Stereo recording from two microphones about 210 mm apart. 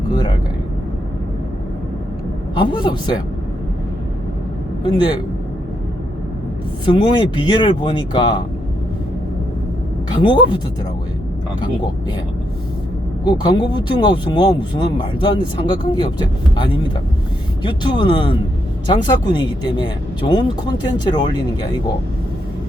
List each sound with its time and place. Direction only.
2.6 s speech: 20° left (ahead or behind)
6.8 s speech: 20° left (ahead or behind)
10.2 s speech: 20° left (ahead or behind)
13.2 s speech: 20° left (ahead or behind)
17.6 s speech: 20° left (ahead or behind)